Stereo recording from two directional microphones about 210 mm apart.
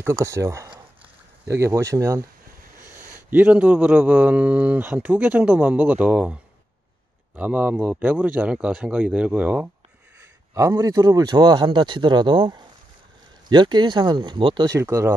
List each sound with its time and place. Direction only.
0.0 s a man's voice: 15° right (ahead or behind)